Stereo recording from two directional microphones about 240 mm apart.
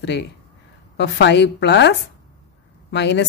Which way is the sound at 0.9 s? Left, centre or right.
Left.